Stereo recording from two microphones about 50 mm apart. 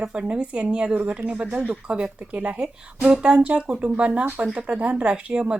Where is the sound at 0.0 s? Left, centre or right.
Right.